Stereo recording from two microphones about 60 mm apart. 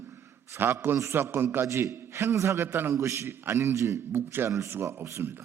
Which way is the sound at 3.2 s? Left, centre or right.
Right.